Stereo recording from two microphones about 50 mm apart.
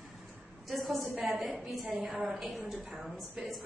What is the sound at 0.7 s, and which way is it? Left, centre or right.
A woman's voice, centre.